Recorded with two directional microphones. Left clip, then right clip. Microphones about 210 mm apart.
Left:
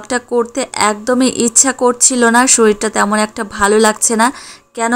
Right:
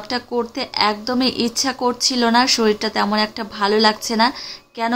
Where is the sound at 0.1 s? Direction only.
25° left (ahead or behind).